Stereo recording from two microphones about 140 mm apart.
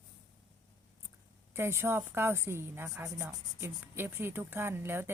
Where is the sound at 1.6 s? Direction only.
15° right (ahead or behind).